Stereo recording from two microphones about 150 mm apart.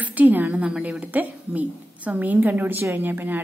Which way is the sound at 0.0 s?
10° right (ahead or behind).